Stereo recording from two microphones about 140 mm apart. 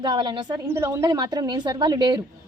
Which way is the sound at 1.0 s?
30° right (ahead or behind).